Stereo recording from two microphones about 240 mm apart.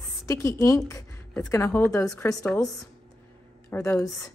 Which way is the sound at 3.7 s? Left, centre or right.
Centre.